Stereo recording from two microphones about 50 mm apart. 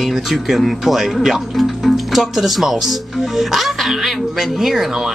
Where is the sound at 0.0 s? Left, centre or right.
Centre.